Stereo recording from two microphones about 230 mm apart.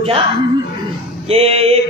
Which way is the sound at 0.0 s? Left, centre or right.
Right.